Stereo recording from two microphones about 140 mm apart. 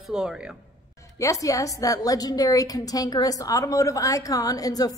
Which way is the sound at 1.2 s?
25° left (ahead or behind).